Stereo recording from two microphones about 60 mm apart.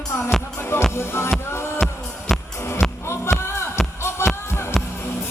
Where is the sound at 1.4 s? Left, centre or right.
Left.